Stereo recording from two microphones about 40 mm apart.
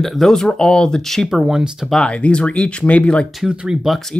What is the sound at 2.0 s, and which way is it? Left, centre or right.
Speech, left.